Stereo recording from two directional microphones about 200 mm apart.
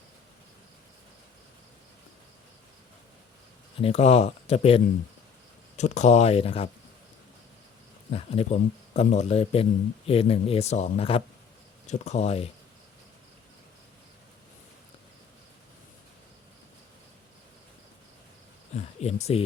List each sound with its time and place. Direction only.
3.8 s speech: 30° left (ahead or behind)
8.1 s speech: 30° left (ahead or behind)
18.9 s speech: 30° left (ahead or behind)